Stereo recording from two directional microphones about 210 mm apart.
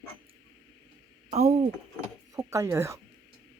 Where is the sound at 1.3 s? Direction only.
30° right (ahead or behind).